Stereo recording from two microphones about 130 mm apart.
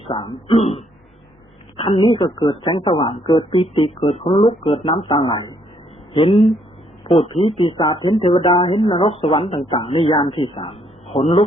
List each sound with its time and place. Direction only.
0.0 s a woman's voice: 40° left (ahead or behind)
3.5 s a woman's voice: 45° left (ahead or behind)
6.3 s speech: centre (ahead or behind)
7.1 s a woman's voice: 50° left (ahead or behind)
7.8 s speech: 35° left (ahead or behind)
8.2 s a woman's voice: 50° left (ahead or behind)